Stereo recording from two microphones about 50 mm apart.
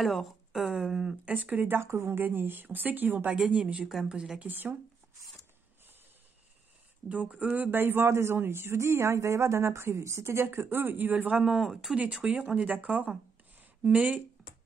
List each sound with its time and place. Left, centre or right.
0.0 s a sound: centre
1.2 s speech: right
1.8 s speech: right
2.2 s speech: right
3.3 s speech: centre
4.4 s speech: right
7.1 s speech: right
7.7 s speech: right
11.2 s speech: centre
11.6 s speech: centre
11.9 s speech: right